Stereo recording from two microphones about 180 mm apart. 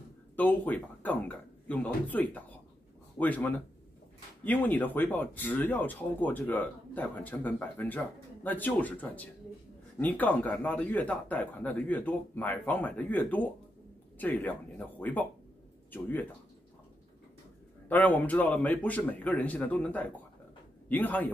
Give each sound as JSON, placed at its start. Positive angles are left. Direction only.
{"t": 0.4, "sound": "speech", "side_deg": 10}
{"t": 17.8, "sound": "speech", "side_deg": 10}